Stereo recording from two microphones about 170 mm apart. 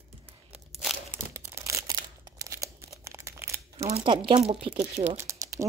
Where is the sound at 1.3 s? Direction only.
15° right (ahead or behind).